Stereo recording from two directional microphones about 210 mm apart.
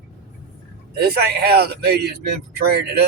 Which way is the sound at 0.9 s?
50° right (ahead or behind).